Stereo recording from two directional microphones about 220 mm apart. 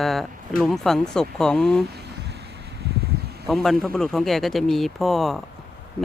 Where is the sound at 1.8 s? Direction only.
50° right (ahead or behind).